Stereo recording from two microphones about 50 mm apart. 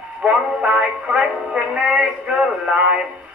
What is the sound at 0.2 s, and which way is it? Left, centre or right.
Speech, right.